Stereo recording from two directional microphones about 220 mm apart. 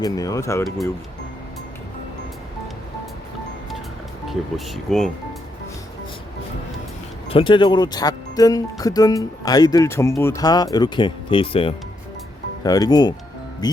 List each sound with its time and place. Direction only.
0.0 s speech: 15° left (ahead or behind)
4.3 s speech: centre (ahead or behind)
7.3 s speech: 25° left (ahead or behind)